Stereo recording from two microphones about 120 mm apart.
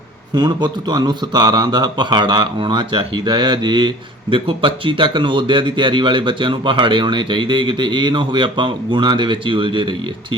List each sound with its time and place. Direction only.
0.3 s speech: 35° right (ahead or behind)